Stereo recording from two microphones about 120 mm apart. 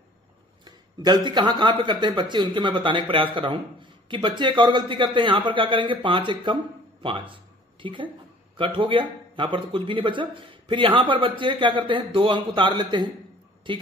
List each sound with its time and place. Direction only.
0.7 s a woman's voice: 35° right (ahead or behind)